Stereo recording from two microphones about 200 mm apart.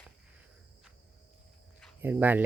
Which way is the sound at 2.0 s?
10° right (ahead or behind).